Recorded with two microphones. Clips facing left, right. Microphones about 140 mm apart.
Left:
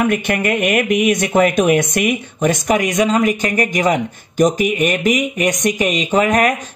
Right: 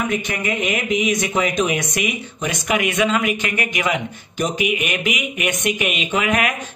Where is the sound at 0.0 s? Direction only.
60° left (ahead or behind).